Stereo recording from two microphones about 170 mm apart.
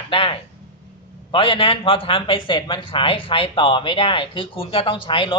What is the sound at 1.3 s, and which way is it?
Speech, 30° left (ahead or behind).